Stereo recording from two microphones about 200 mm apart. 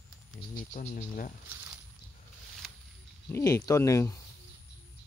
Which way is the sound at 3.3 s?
15° left (ahead or behind).